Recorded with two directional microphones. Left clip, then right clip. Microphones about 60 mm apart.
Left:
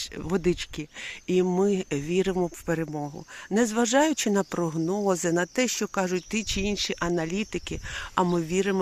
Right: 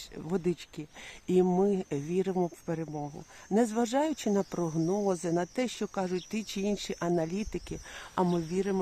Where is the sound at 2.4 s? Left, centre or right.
Left.